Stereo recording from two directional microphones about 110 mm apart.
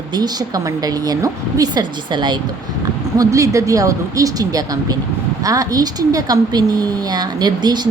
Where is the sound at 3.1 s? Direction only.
30° right (ahead or behind).